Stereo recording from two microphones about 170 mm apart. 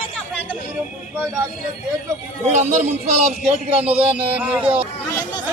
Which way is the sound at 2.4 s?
45° right (ahead or behind).